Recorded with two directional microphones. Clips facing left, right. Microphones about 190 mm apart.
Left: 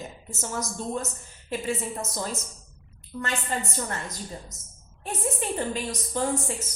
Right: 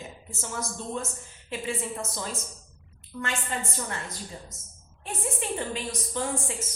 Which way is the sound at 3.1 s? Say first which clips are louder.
Left 1 dB; 25° left (ahead or behind).